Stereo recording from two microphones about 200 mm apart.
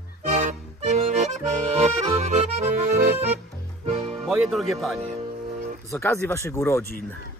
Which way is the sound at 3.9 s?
30° right (ahead or behind).